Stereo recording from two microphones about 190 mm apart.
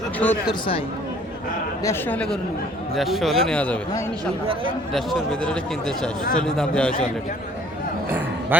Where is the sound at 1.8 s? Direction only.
10° left (ahead or behind).